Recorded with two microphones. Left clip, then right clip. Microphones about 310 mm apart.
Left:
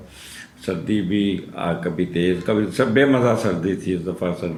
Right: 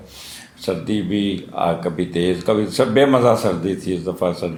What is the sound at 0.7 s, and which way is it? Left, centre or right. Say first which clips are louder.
Speech: right 1 dB; centre.